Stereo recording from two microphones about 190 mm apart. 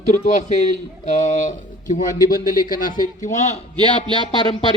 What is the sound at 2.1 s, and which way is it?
Speech, 20° left (ahead or behind).